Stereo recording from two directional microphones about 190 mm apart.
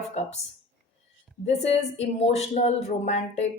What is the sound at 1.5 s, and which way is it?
A woman's voice, 35° left (ahead or behind).